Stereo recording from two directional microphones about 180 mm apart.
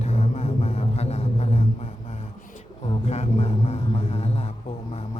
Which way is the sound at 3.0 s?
35° left (ahead or behind).